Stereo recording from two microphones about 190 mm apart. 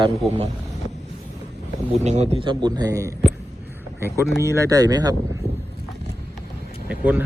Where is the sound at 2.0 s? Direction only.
35° right (ahead or behind); by 3.1 s 15° right (ahead or behind).